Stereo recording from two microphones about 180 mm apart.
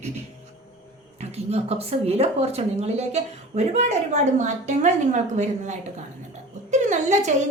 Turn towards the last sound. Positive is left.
turn(degrees=-40)  # may be behind; listen again after turning